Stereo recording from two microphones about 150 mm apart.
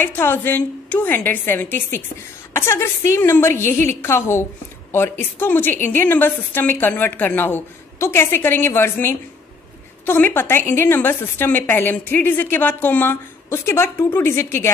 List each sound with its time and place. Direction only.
0.0 s a woman's voice: 15° left (ahead or behind)